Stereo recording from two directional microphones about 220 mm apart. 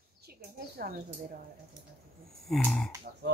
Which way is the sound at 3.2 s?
50° right (ahead or behind).